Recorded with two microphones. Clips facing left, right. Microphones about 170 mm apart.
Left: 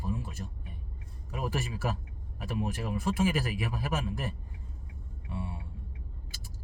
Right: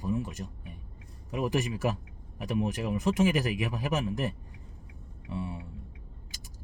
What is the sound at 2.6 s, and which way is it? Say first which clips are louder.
Speech: right 3 dB; 20° right (ahead or behind).